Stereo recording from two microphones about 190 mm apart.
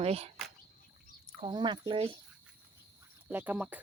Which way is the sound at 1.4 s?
25° right (ahead or behind).